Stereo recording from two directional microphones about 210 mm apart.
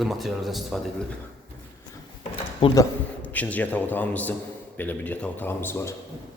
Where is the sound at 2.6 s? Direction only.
25° left (ahead or behind).